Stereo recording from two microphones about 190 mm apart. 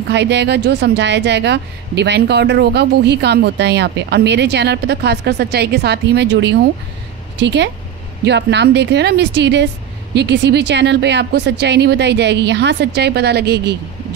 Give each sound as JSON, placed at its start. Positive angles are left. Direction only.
{"t": 0.1, "sound": "speech", "side_deg": -65}